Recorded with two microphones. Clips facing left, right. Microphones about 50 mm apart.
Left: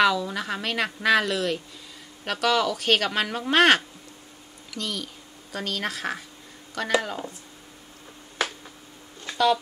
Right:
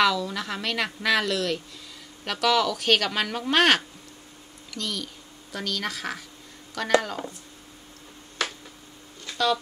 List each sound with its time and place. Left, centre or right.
0.0 s speech: centre
4.6 s a sound: centre
5.6 s speech: centre
6.7 s speech: centre